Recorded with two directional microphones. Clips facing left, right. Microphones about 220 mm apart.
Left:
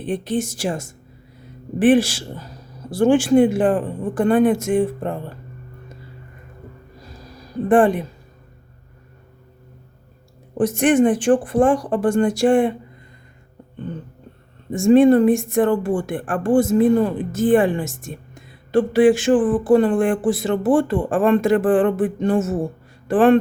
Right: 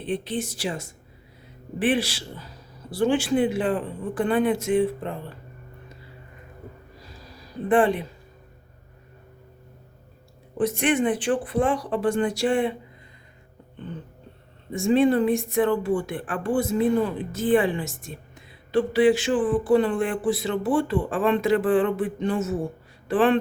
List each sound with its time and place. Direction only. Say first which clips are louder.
0.0 s speech: left 5 dB; 45° left (ahead or behind)
7.7 s speech: left 5 dB; 45° left (ahead or behind)
10.6 s speech: left 7 dB; 45° left (ahead or behind)
14.7 s speech: left 7 dB; 45° left (ahead or behind)